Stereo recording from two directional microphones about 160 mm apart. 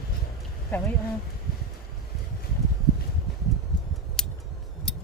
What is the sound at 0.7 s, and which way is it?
Speech, 10° left (ahead or behind).